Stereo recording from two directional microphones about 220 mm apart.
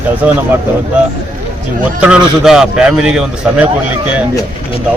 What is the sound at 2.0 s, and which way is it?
A man's voice, 5° right (ahead or behind).